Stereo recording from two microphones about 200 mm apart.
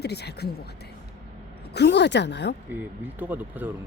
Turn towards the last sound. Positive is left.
turn(degrees=-10)  # may be behind; listen again after turning